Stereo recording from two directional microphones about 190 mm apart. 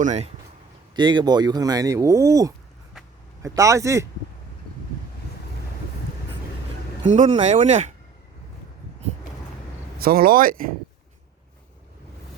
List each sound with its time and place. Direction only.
0.0 s speech: 40° right (ahead or behind)
0.9 s a man's voice: 25° right (ahead or behind)
7.1 s speech: 40° right (ahead or behind)
10.0 s speech: 50° right (ahead or behind)